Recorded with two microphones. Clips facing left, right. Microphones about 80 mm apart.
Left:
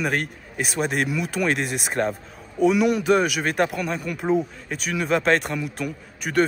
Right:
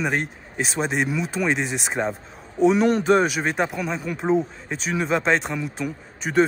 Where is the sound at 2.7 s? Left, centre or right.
Right.